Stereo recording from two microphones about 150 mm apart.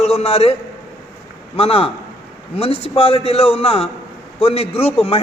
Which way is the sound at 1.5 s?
40° left (ahead or behind).